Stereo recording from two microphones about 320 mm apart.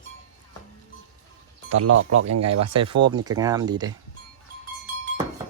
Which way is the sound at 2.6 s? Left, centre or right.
Centre.